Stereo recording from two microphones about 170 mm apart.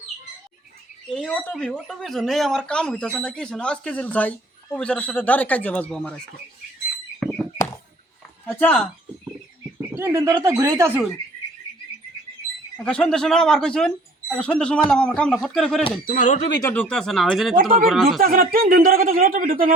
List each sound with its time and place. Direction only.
1.1 s speech: 5° left (ahead or behind)
7.2 s a sound: 5° left (ahead or behind)
8.5 s speech: 10° left (ahead or behind)
9.9 s speech: 15° right (ahead or behind)
12.7 s speech: 5° left (ahead or behind)
16.0 s speech: 50° left (ahead or behind)
16.6 s speech: 15° left (ahead or behind)
16.9 s speech: 5° left (ahead or behind)
17.6 s speech: 55° right (ahead or behind)
17.8 s speech: centre (ahead or behind)
18.2 s speech: 55° right (ahead or behind)